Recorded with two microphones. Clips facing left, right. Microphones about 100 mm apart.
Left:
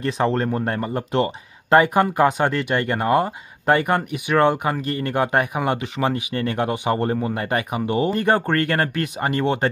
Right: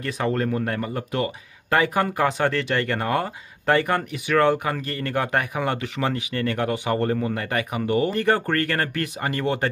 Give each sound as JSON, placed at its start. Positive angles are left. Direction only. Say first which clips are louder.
{"t": 0.0, "sound": "speech", "louder": "left 3 dB", "side_deg": 30}